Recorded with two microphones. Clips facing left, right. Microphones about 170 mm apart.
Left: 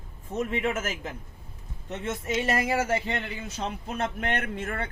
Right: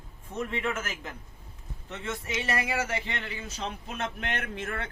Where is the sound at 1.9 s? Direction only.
45° left (ahead or behind).